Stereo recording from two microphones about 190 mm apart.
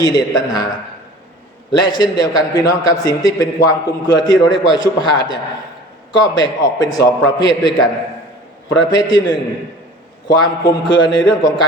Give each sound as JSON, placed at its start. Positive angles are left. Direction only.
{"t": 0.0, "sound": "a man's voice", "side_deg": 20}
{"t": 1.8, "sound": "a man's voice", "side_deg": 25}
{"t": 10.6, "sound": "a man's voice", "side_deg": 20}